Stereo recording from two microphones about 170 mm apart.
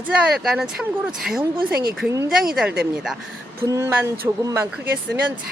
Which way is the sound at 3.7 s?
15° right (ahead or behind).